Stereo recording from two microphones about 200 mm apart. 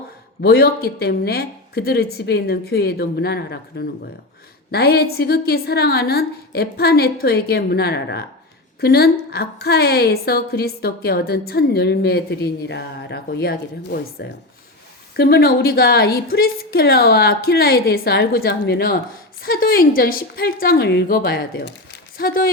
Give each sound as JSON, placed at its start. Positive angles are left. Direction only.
{"t": 0.4, "sound": "a woman's voice", "side_deg": 50}